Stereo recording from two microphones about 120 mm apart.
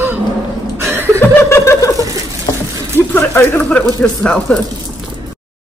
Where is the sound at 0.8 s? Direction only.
25° right (ahead or behind).